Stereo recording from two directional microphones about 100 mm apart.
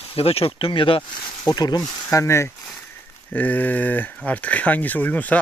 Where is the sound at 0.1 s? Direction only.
80° left; by 1.0 s 60° left (ahead or behind).